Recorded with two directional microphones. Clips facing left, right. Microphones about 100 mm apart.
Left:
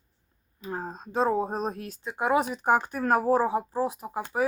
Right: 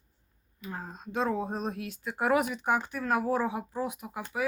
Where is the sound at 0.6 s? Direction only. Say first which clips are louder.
Left 5 dB; 35° left (ahead or behind).